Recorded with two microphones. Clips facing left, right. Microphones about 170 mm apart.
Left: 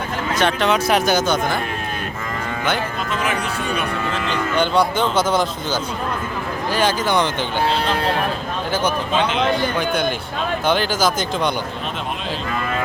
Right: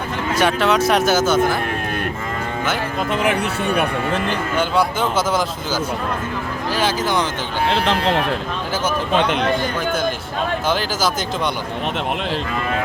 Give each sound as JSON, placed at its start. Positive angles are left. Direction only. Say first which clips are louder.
{"t": 0.3, "sound": "speech", "louder": "right 2 dB", "side_deg": -5}
{"t": 3.1, "sound": "speech", "louder": "right 5 dB", "side_deg": -60}
{"t": 4.5, "sound": "speech", "louder": "left 2 dB", "side_deg": -5}
{"t": 9.1, "sound": "speech", "louder": "right 2 dB", "side_deg": -55}
{"t": 10.7, "sound": "speech", "louder": "left 4 dB", "side_deg": 0}